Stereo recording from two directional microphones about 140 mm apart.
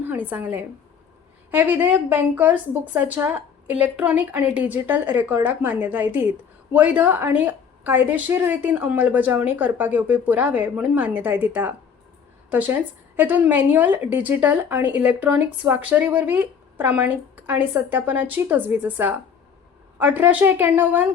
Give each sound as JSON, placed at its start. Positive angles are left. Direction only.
{"t": 0.1, "sound": "a woman's voice", "side_deg": -15}